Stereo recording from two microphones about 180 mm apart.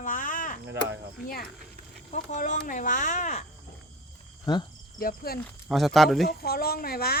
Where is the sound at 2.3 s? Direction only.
45° left (ahead or behind).